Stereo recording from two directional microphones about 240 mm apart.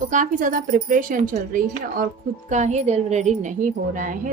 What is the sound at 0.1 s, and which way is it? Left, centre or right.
A woman's voice, right.